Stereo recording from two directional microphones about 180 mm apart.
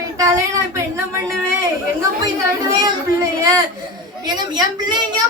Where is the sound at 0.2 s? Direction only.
15° right (ahead or behind).